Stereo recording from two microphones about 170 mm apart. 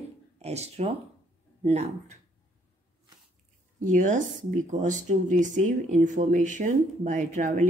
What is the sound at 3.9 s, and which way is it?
Speech, 50° right (ahead or behind).